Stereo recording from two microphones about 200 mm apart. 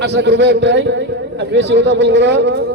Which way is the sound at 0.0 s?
60° right (ahead or behind).